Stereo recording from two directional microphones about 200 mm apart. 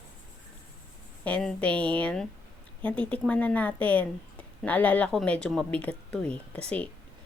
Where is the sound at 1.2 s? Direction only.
5° left (ahead or behind).